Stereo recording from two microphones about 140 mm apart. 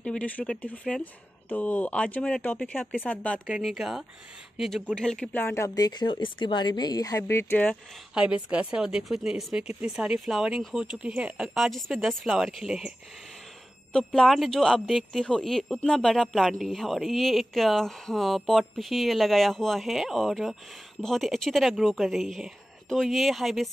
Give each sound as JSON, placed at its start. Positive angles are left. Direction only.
{"t": 0.0, "sound": "speech", "side_deg": 10}
{"t": 3.4, "sound": "speech", "side_deg": -5}
{"t": 5.4, "sound": "a woman's voice", "side_deg": 20}
{"t": 8.1, "sound": "speech", "side_deg": -5}
{"t": 13.9, "sound": "speech", "side_deg": 0}